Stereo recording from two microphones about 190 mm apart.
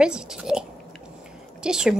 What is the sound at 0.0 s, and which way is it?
Speech, 5° right (ahead or behind).